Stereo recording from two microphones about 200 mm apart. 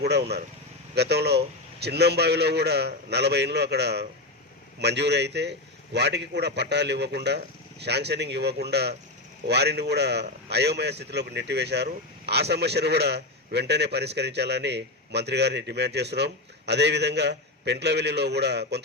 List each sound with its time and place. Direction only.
0.0 s a man's voice: 55° right (ahead or behind)